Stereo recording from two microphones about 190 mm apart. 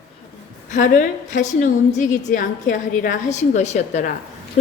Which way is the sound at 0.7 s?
40° left (ahead or behind).